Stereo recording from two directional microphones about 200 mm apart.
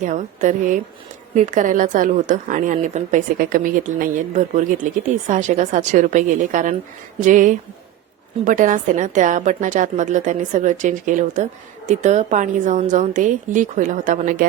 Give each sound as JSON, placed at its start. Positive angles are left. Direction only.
{"t": 0.0, "sound": "a woman's voice", "side_deg": -40}